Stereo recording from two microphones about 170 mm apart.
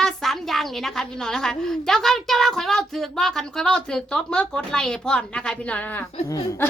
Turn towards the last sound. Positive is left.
turn(degrees=20)  # may be behind; listen again after turning